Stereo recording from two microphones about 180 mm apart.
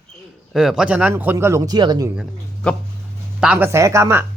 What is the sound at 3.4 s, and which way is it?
Speech, 10° right (ahead or behind).